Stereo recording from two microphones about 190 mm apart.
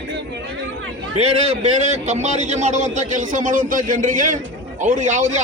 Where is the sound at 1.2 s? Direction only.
35° right (ahead or behind).